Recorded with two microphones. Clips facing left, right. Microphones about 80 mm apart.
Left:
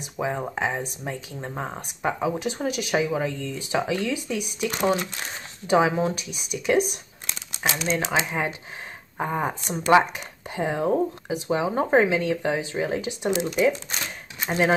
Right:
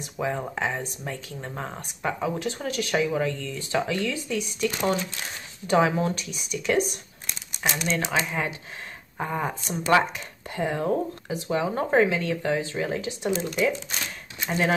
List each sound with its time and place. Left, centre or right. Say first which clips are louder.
0.0 s speech: left 1 dB; centre
8.0 s speech: left 2 dB; centre